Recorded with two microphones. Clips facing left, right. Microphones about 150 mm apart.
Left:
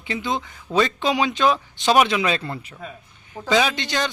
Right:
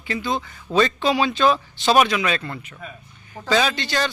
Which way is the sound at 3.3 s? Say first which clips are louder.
Left 1 dB; 15° left (ahead or behind).